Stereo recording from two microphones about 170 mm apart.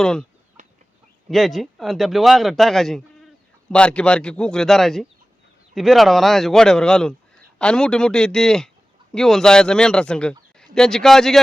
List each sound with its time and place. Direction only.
0.0 s speech: 5° left (ahead or behind)
0.6 s chicken: 45° right (ahead or behind)
1.3 s speech: centre (ahead or behind)